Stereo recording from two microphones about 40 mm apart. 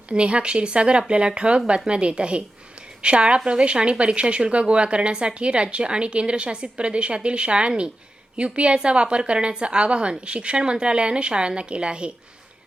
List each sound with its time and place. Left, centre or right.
0.1 s a woman's voice: right